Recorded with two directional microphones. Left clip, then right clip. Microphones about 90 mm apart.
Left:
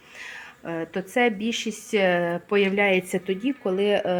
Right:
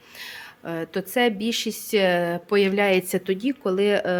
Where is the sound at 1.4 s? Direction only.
15° right (ahead or behind).